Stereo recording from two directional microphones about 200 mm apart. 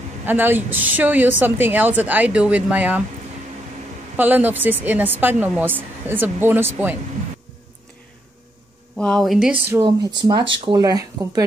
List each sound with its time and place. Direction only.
0.3 s a woman's voice: 10° right (ahead or behind)
4.2 s a woman's voice: 10° right (ahead or behind)
8.9 s speech: 5° left (ahead or behind)
10.6 s speech: 20° right (ahead or behind)